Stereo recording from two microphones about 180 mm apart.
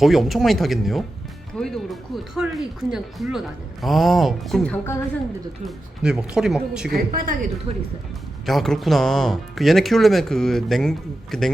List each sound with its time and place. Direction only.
0.0 s speech: centre (ahead or behind)
5.6 s speech: 5° right (ahead or behind)
6.9 s a woman's voice: 50° right (ahead or behind)
8.4 s speech: centre (ahead or behind)